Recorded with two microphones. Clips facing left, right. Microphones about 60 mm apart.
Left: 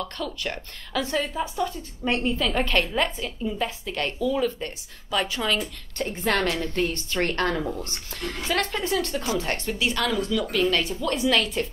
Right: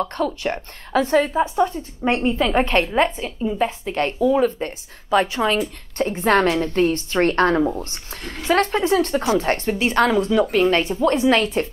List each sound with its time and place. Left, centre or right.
0.0 s a woman's voice: right